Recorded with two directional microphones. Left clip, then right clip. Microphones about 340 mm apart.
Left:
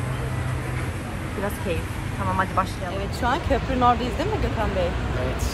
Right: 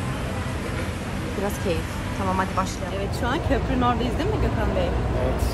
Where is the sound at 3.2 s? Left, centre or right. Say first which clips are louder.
Left 3 dB; centre.